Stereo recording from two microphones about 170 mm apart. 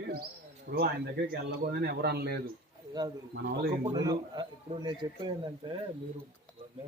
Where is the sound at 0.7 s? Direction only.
65° right (ahead or behind).